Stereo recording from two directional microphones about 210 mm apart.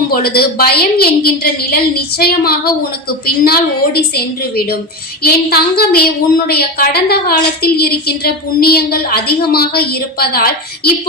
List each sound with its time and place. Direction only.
0.1 s a woman's voice: 45° left (ahead or behind)